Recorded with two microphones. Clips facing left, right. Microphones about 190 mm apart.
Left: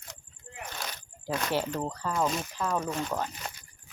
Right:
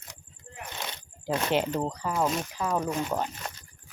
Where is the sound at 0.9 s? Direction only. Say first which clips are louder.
Right 4 dB; 25° right (ahead or behind).